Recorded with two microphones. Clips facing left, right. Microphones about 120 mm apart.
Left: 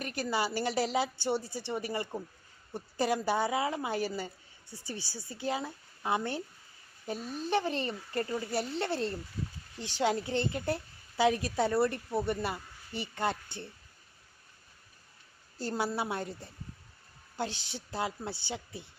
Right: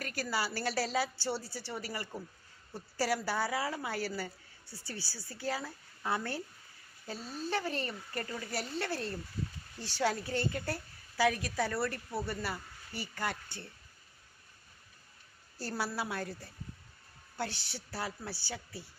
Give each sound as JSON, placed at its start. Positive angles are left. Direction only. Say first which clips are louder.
{"t": 0.0, "sound": "a woman's voice", "louder": "left 3 dB", "side_deg": 20}
{"t": 15.5, "sound": "a woman's voice", "louder": "left 4 dB", "side_deg": 20}